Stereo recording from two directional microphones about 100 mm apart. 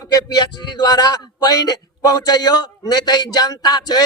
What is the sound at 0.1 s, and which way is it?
A man's voice, 45° left (ahead or behind).